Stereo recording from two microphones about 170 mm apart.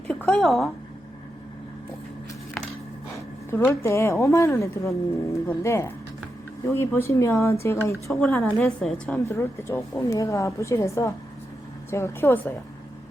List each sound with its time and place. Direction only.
0.1 s a woman's voice: 5° left (ahead or behind)
3.5 s speech: 15° left (ahead or behind)
8.1 s a woman's voice: centre (ahead or behind)
9.2 s speech: 15° left (ahead or behind)